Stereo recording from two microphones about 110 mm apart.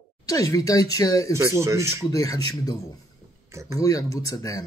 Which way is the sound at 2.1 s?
30° left (ahead or behind).